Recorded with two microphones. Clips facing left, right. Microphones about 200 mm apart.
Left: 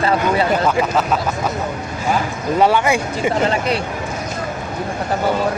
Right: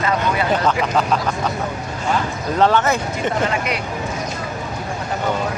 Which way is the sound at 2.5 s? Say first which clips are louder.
Left 1 dB; 10° left (ahead or behind).